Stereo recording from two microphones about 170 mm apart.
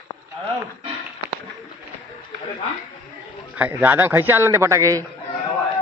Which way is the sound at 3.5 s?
10° right (ahead or behind).